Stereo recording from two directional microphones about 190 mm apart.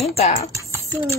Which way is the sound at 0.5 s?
15° right (ahead or behind).